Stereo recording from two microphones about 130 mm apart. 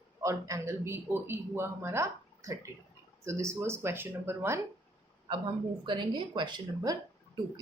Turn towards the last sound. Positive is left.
turn(degrees=-30)  # may be behind; listen again after turning